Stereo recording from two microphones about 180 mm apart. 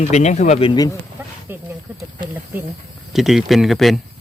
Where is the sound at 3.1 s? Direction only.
Centre (ahead or behind).